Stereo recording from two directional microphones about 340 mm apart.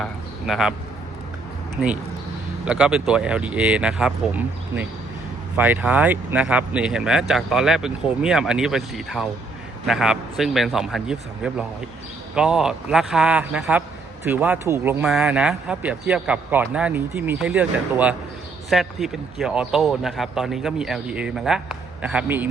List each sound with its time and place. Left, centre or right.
0.0 s a man's voice: centre
2.6 s speech: centre
5.5 s speech: centre